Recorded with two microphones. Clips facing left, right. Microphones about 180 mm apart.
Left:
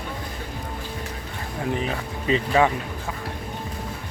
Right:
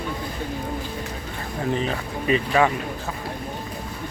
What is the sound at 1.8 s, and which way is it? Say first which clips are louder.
Speech: right 2 dB; 20° left (ahead or behind).